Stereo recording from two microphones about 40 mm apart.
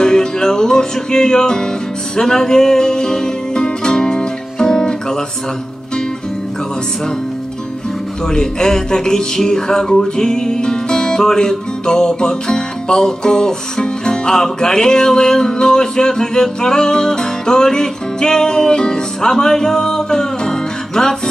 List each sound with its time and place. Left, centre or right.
0.0 s music: centre
8.3 s speech: centre